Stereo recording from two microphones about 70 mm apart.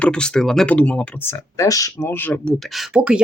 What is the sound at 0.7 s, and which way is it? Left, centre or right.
Speech, centre.